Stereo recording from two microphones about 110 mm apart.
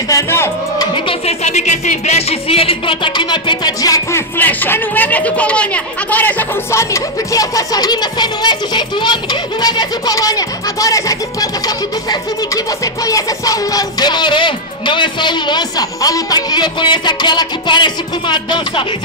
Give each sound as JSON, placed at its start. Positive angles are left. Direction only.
{"t": 0.1, "sound": "speech", "side_deg": 25}
{"t": 0.9, "sound": "music", "side_deg": 50}
{"t": 1.4, "sound": "speech", "side_deg": 90}
{"t": 4.4, "sound": "speech", "side_deg": 15}
{"t": 11.6, "sound": "music", "side_deg": 35}